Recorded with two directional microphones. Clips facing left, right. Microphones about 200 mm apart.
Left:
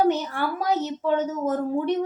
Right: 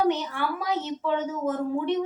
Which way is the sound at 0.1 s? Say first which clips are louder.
Left 2 dB; 40° left (ahead or behind).